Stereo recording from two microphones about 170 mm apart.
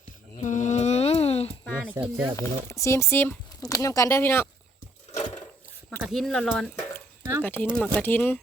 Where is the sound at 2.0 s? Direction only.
15° right (ahead or behind).